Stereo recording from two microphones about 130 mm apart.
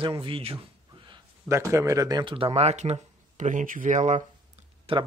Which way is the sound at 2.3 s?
50° right (ahead or behind).